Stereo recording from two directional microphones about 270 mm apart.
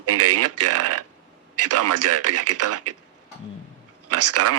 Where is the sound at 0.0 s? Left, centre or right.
Right.